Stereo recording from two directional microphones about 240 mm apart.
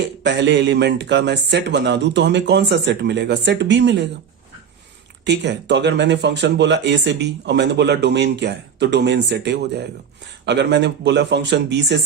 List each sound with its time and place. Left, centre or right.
0.2 s speech: right
5.2 s speech: right